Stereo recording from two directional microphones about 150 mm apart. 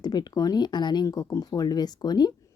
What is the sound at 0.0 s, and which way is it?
Speech, 25° left (ahead or behind).